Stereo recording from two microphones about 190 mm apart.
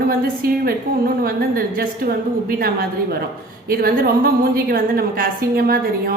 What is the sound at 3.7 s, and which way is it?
A woman's voice, 50° right (ahead or behind).